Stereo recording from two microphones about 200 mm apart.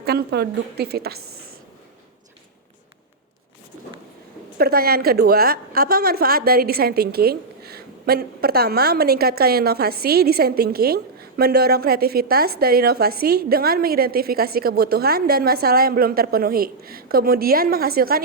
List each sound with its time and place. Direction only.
0.0 s a woman's voice: 50° right (ahead or behind)
4.5 s a woman's voice: 50° right (ahead or behind)